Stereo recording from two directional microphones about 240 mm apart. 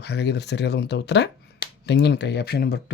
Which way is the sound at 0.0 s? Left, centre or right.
Left.